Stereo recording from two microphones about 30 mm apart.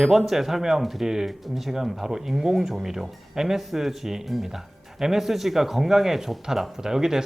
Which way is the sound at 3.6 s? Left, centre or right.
Centre.